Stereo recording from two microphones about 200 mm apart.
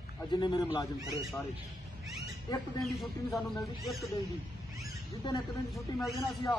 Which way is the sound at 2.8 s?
Centre (ahead or behind).